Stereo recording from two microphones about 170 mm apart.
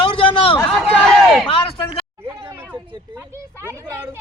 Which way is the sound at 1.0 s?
Centre (ahead or behind).